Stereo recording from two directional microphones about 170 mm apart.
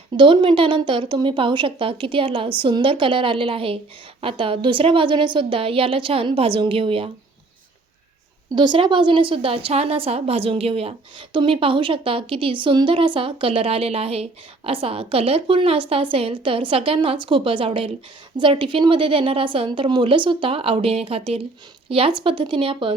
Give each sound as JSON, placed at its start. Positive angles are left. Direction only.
{"t": 0.2, "sound": "speech", "side_deg": -30}
{"t": 8.5, "sound": "speech", "side_deg": -25}